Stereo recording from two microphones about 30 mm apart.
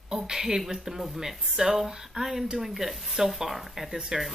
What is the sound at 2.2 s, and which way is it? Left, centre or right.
Speech, right.